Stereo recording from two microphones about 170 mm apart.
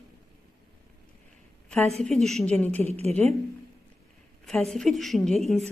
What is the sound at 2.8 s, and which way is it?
Speech, 40° right (ahead or behind).